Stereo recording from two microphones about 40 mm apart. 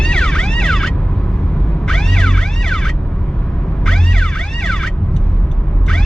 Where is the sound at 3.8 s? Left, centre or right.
Centre.